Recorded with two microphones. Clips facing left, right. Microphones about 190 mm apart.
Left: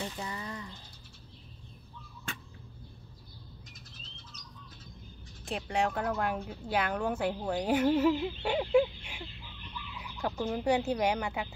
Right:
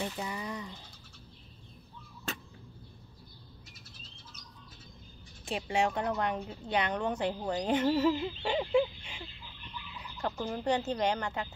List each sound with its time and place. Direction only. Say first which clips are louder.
0.0 s a sound: right 2 dB; 15° right (ahead or behind)
5.6 s a woman's voice: right 1 dB; centre (ahead or behind)
10.2 s speech: left 2 dB; 5° left (ahead or behind)